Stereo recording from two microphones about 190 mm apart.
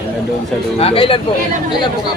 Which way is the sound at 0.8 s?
30° left (ahead or behind).